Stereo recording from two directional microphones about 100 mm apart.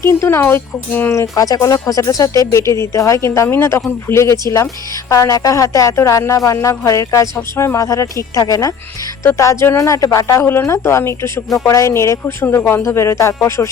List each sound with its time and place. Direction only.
0.0 s a woman's voice: 25° left (ahead or behind)